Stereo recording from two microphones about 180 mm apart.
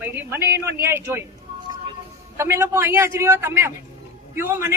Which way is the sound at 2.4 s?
15° right (ahead or behind).